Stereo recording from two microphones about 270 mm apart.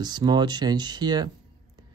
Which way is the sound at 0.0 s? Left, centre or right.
Centre.